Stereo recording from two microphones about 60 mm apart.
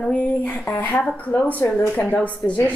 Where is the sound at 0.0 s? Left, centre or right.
Left.